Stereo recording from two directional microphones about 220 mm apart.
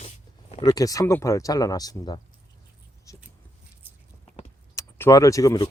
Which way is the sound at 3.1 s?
15° left (ahead or behind).